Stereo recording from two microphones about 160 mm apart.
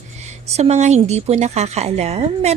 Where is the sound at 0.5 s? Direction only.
45° right (ahead or behind).